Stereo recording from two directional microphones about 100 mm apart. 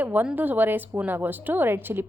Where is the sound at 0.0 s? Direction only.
20° right (ahead or behind).